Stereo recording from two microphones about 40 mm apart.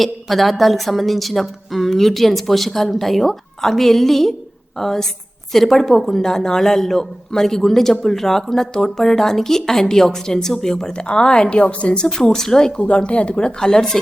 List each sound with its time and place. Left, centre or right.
0.0 s a woman's voice: centre; by 12.0 s left
12.0 s a man's voice: centre
12.8 s speech: left